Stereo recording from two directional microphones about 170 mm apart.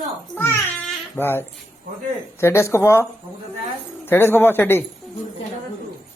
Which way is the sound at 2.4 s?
15° left (ahead or behind).